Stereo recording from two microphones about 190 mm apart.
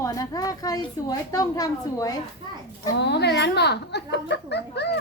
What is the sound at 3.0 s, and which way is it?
A woman's voice, 60° left (ahead or behind).